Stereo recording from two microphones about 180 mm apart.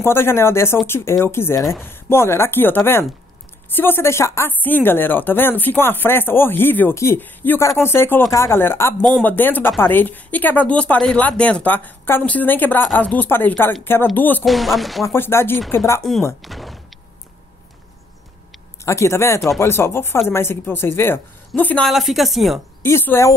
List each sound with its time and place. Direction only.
0.0 s speech: 15° left (ahead or behind)
14.4 s chopping: centre (ahead or behind)
15.1 s speech: 10° left (ahead or behind)
16.4 s speech: centre (ahead or behind)
18.9 s speech: 15° left (ahead or behind); by 22.6 s centre (ahead or behind)
22.8 s speech: 15° left (ahead or behind)